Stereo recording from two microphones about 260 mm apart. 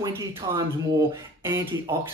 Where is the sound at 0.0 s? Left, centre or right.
Centre.